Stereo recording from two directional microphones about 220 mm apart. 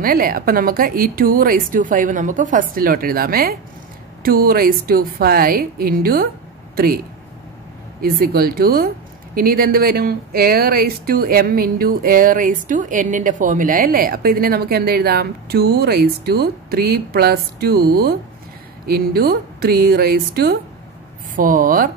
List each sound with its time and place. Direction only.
0.0 s a woman's voice: 40° right (ahead or behind)
8.0 s a woman's voice: 45° right (ahead or behind)